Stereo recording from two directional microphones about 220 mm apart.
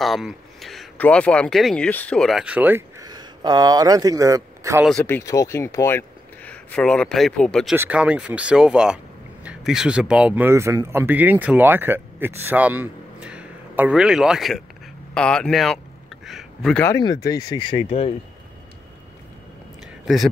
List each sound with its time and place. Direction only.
0.0 s speech: centre (ahead or behind)
4.8 s speech: 5° left (ahead or behind)
7.7 s speech: 10° right (ahead or behind); by 18.1 s 25° left (ahead or behind)